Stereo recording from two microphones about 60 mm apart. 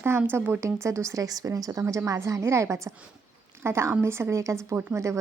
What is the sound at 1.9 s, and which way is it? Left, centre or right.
A woman's voice, right.